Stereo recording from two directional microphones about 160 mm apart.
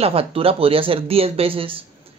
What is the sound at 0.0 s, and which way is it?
Speech, 35° right (ahead or behind).